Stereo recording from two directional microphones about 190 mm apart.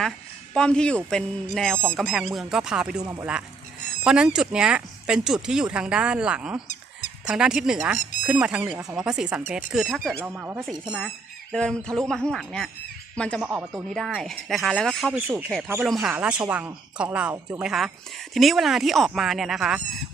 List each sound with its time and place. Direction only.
0.5 s speech: 5° left (ahead or behind)
3.0 s a woman's voice: 15° right (ahead or behind)
4.0 s speech: 5° right (ahead or behind)
10.2 s a woman's voice: 10° right (ahead or behind)
11.5 s speech: 5° left (ahead or behind)
13.4 s a woman's voice: 15° right (ahead or behind)
13.9 s a woman's voice: centre (ahead or behind)